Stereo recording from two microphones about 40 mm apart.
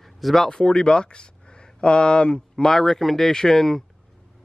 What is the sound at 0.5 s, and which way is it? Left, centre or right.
Speech, centre.